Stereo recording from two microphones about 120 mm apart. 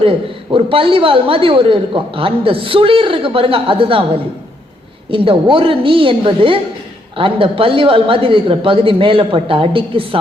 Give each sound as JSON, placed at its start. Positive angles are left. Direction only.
{"t": 0.0, "sound": "a woman's voice", "side_deg": -50}
{"t": 5.1, "sound": "a woman's voice", "side_deg": -45}